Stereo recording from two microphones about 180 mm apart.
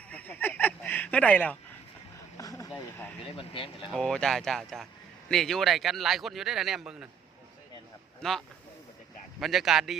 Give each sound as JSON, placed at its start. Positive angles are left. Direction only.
{"t": 0.1, "sound": "honk", "side_deg": 10}
{"t": 2.4, "sound": "a sound", "side_deg": 20}
{"t": 3.2, "sound": "speech", "side_deg": 30}
{"t": 3.9, "sound": "speech", "side_deg": 5}
{"t": 8.2, "sound": "speech", "side_deg": 0}